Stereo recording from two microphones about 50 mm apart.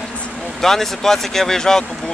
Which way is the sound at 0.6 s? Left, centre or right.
Centre.